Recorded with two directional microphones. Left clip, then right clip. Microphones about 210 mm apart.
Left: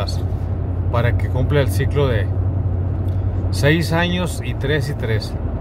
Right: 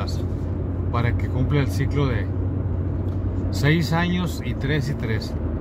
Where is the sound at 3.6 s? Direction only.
10° left (ahead or behind).